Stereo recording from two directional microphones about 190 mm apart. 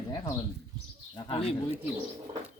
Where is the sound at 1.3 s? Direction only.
30° left (ahead or behind).